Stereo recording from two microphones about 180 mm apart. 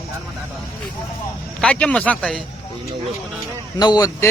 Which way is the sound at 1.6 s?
5° left (ahead or behind).